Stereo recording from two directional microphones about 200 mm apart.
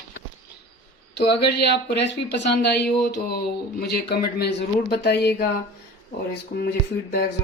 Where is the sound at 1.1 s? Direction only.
55° left (ahead or behind).